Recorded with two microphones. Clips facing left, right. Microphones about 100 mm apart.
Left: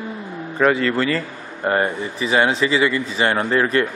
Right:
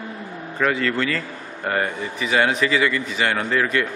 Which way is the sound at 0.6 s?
35° left (ahead or behind).